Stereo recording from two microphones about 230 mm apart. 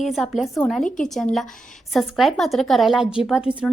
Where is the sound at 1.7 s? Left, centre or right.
Centre.